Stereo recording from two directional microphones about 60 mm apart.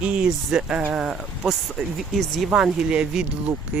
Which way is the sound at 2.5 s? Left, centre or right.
Centre.